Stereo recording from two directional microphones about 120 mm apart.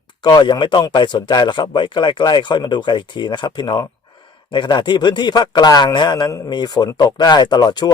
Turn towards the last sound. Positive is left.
turn(degrees=35)  # may be behind; listen again after turning